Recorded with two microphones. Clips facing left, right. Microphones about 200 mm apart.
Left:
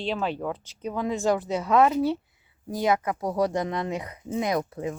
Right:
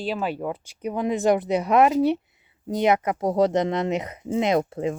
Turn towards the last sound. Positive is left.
turn(degrees=-25)  # may be behind; listen again after turning